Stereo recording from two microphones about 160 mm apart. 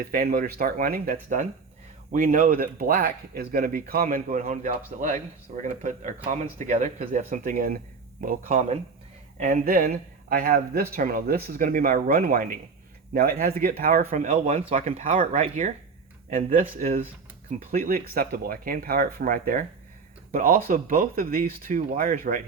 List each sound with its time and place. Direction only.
0.0 s speech: 65° right (ahead or behind)
9.4 s speech: 55° right (ahead or behind)
17.8 s speech: 65° right (ahead or behind)